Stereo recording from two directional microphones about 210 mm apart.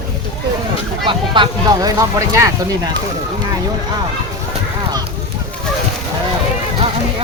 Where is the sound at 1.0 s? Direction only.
20° right (ahead or behind).